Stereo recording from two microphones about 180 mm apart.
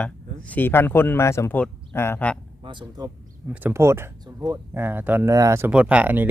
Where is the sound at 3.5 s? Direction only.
10° right (ahead or behind).